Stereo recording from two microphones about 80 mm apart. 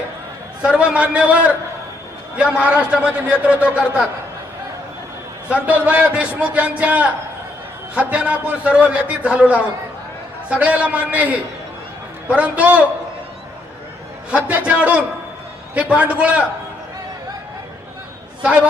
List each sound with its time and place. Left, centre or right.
0.6 s a man's voice: centre
5.5 s a man's voice: centre
14.3 s a man's voice: centre
18.4 s a man's voice: centre